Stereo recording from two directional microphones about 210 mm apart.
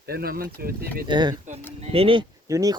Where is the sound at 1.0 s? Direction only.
20° right (ahead or behind).